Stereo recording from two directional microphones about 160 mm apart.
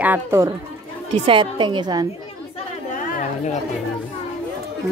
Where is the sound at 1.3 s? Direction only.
30° right (ahead or behind).